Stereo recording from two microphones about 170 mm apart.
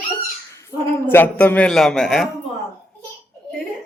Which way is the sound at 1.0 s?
10° left (ahead or behind).